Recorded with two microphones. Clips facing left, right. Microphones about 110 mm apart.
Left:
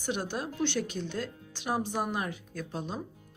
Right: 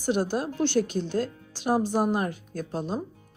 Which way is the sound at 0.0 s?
40° right (ahead or behind).